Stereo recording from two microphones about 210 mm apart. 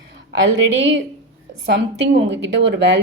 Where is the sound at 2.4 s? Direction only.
55° right (ahead or behind).